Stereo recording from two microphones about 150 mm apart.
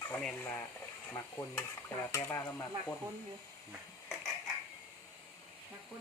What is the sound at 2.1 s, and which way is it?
Speech, 15° left (ahead or behind).